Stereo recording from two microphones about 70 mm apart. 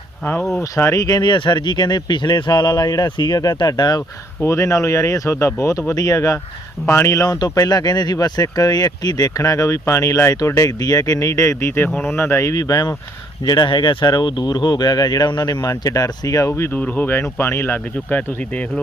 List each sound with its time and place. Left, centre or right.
0.6 s speech: left
1.0 s speech: left
4.4 s speech: left
7.3 s speech: left
11.9 s speech: centre
12.1 s speech: left
12.5 s speech: left
13.4 s speech: left
16.5 s speech: left
18.1 s speech: left